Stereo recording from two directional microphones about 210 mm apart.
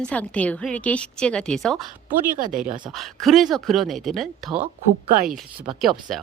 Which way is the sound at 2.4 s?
40° right (ahead or behind).